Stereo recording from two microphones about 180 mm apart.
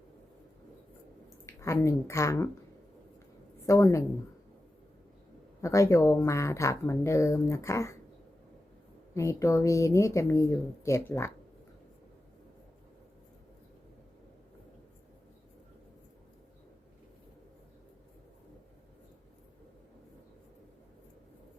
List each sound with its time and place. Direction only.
1.5 s a woman's voice: 15° left (ahead or behind)
3.7 s speech: 15° left (ahead or behind)
5.6 s speech: 15° left (ahead or behind)
9.1 s speech: 15° left (ahead or behind)